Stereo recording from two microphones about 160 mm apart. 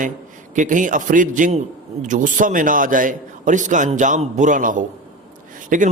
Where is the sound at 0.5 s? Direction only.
55° right (ahead or behind).